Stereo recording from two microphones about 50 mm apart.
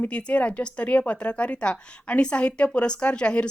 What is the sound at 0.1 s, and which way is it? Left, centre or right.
A woman's voice, left.